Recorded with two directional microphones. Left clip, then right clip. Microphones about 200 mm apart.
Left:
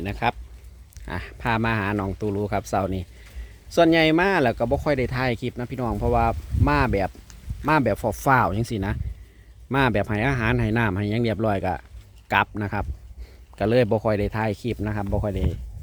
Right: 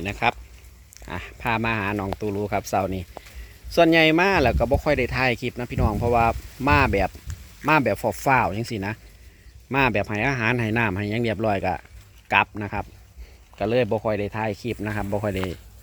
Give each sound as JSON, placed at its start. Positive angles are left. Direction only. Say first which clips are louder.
{"t": 0.0, "sound": "speech", "louder": "right 2 dB", "side_deg": 0}
{"t": 0.9, "sound": "speech", "louder": "even", "side_deg": 10}
{"t": 14.8, "sound": "speech", "louder": "right 1 dB", "side_deg": 5}